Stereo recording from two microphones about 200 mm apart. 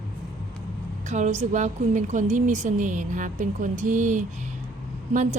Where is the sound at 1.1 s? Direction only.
35° right (ahead or behind).